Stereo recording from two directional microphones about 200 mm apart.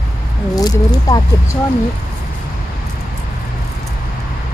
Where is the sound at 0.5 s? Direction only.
20° left (ahead or behind).